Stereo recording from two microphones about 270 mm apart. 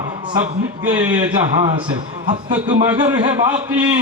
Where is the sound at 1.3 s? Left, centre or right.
Centre.